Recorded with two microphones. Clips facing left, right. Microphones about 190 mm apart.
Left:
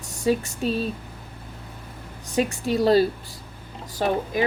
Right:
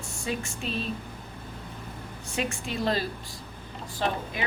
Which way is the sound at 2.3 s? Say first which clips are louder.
Left 8 dB; 40° left (ahead or behind).